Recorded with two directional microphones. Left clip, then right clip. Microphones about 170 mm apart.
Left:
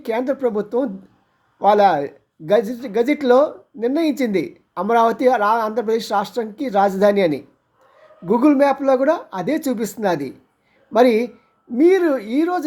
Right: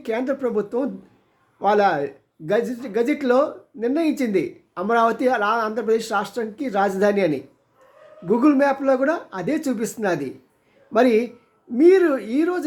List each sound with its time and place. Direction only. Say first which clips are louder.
0.0 s speech: left 3 dB; 20° left (ahead or behind)